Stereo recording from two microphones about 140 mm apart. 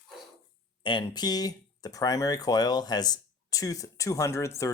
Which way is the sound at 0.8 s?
35° left (ahead or behind).